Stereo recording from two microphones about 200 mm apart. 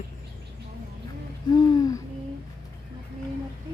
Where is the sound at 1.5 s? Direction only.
20° left (ahead or behind).